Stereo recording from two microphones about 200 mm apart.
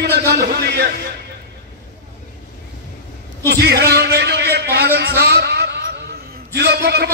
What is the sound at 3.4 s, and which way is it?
A man's voice, 55° right (ahead or behind).